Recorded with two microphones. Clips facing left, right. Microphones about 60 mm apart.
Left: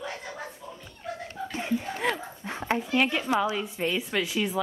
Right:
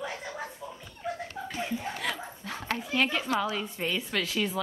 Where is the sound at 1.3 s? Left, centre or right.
Left.